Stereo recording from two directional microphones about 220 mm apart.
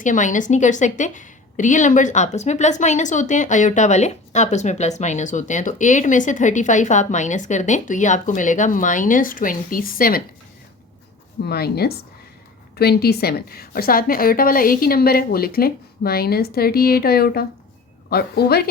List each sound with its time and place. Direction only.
0.0 s a woman's voice: 35° left (ahead or behind)
11.4 s a woman's voice: 45° left (ahead or behind)